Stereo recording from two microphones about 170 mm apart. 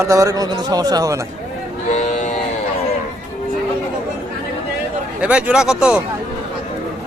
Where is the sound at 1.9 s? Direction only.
45° left (ahead or behind).